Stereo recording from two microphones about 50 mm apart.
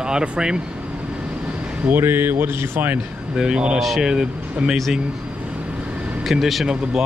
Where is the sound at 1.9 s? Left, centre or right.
Right.